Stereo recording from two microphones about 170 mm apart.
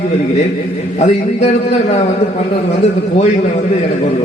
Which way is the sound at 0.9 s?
45° left (ahead or behind).